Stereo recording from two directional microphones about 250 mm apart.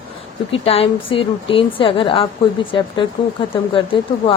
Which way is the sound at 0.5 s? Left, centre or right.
Left.